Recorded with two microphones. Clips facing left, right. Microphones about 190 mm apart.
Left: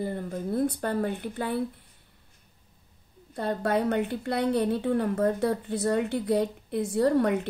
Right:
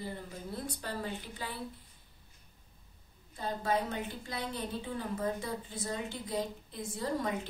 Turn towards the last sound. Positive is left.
turn(degrees=65)  # may be behind; listen again after turning